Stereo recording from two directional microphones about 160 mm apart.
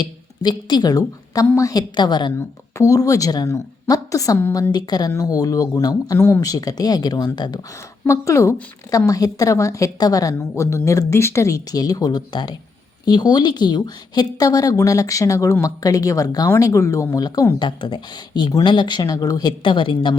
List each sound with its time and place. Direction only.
0.0 s speech: 25° left (ahead or behind)
4.7 s speech: 25° left (ahead or behind)